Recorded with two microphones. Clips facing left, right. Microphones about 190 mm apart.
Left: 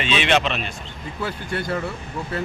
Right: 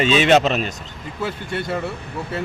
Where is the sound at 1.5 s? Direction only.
25° right (ahead or behind).